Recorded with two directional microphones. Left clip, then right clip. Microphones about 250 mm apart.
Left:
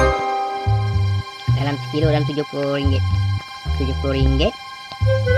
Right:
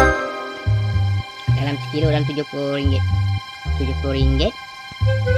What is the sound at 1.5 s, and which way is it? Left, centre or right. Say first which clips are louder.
Speech: left 1 dB; centre.